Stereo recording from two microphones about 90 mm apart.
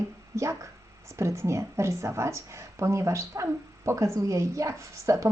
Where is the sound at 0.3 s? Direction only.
30° right (ahead or behind).